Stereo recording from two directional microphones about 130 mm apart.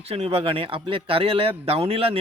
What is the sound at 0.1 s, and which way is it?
A man's voice, 50° right (ahead or behind).